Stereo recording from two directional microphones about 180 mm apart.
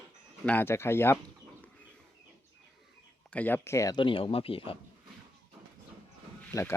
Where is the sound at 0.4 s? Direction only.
10° left (ahead or behind).